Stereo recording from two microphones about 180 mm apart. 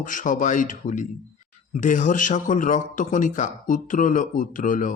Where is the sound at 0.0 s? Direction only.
45° left (ahead or behind).